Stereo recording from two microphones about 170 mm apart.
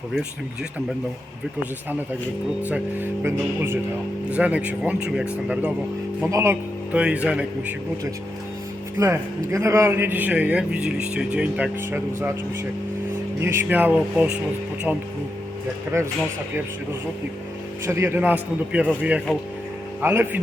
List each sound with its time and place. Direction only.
2.6 s a man's voice: 10° right (ahead or behind)
9.0 s a man's voice: 20° right (ahead or behind)
13.4 s a man's voice: 15° right (ahead or behind)
17.8 s a man's voice: 15° right (ahead or behind); by 19.4 s centre (ahead or behind)
20.0 s a man's voice: 10° right (ahead or behind)